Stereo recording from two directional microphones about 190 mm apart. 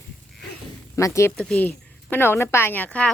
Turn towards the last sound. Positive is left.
turn(degrees=10)  # may be behind; listen again after turning